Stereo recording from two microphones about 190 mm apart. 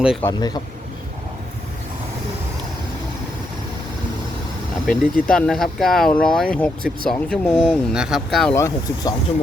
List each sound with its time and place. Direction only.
0.2 s a man's voice: 20° left (ahead or behind)
4.9 s speech: 5° left (ahead or behind)
8.5 s speech: 15° left (ahead or behind)